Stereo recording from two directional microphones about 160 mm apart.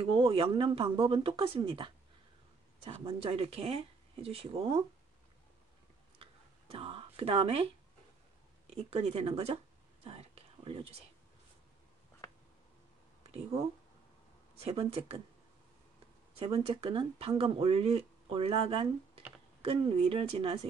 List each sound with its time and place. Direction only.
0.1 s speech: 35° right (ahead or behind)
6.2 s a sound: 35° right (ahead or behind)
6.7 s speech: 35° right (ahead or behind)
10.0 s whispering: 40° right (ahead or behind)
13.3 s speech: 40° right (ahead or behind)
16.3 s speech: 40° right (ahead or behind)